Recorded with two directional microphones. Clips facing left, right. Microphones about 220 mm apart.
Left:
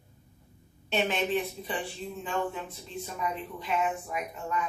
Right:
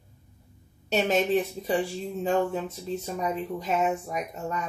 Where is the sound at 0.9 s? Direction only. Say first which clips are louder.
Right 5 dB; 40° right (ahead or behind).